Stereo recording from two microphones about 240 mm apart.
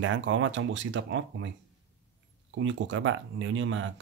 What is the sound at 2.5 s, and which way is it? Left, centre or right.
Speech, right.